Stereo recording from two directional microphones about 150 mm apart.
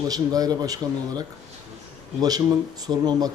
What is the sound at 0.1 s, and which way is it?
Speech, 25° right (ahead or behind).